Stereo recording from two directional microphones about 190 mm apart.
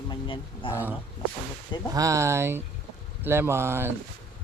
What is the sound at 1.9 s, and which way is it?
Speech, 15° right (ahead or behind).